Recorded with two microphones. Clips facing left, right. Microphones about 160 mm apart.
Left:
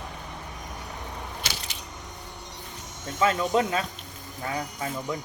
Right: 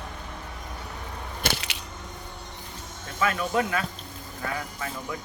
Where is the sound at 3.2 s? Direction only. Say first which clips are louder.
Left 2 dB; 25° left (ahead or behind).